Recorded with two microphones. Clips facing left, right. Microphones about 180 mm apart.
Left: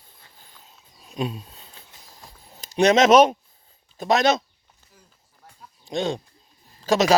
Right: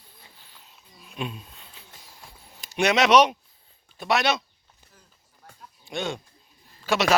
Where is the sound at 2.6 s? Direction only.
40° left (ahead or behind).